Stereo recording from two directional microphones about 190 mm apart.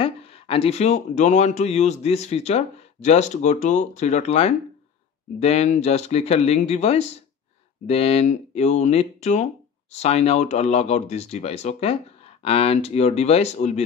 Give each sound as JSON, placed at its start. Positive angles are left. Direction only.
{"t": 0.0, "sound": "speech", "side_deg": 30}